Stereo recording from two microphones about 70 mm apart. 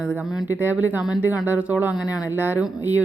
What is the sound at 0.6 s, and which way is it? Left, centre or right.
Speech, right.